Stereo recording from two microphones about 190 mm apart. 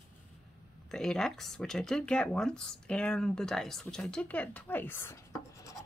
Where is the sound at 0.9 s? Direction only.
5° left (ahead or behind).